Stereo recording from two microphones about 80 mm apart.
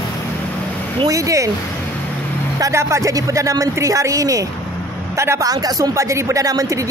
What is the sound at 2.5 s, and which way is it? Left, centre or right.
Speech, right.